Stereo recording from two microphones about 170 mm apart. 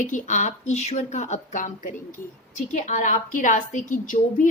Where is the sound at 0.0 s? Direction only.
45° left (ahead or behind).